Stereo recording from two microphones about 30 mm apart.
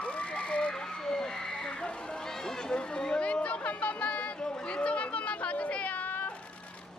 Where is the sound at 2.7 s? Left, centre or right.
Left.